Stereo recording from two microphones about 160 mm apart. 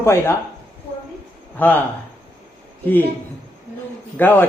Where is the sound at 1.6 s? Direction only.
10° left (ahead or behind).